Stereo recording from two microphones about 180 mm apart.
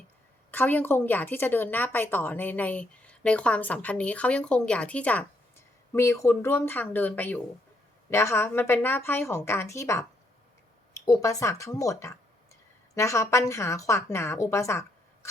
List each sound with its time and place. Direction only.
0.5 s speech: 10° left (ahead or behind)